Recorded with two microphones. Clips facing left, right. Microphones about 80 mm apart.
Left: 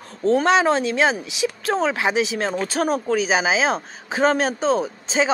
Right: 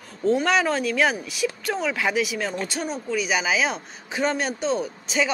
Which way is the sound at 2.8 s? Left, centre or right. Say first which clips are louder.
Left 8 dB; left.